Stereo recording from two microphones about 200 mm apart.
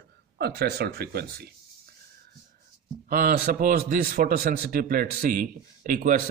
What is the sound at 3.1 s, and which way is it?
Speech, 45° right (ahead or behind).